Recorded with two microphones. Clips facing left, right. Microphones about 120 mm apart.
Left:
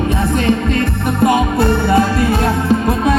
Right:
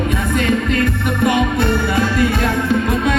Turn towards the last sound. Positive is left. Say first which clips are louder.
# left 3 dB
turn(degrees=35)  # may be behind; listen again after turning